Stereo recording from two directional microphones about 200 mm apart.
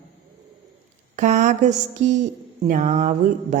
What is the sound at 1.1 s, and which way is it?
Speech, 35° right (ahead or behind).